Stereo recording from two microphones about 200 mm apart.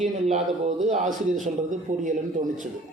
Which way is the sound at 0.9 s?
40° right (ahead or behind).